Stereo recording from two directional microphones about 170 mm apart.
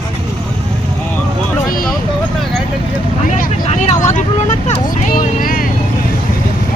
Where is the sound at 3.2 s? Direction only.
50° left (ahead or behind).